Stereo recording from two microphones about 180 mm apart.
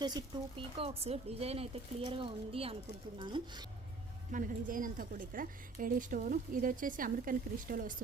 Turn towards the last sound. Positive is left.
turn(degrees=-50)  # may be behind; listen again after turning